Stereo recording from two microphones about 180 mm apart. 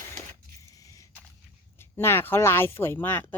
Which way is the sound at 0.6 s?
20° left (ahead or behind).